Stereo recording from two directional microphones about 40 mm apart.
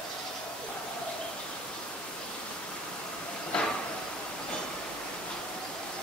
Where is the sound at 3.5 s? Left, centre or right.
Left.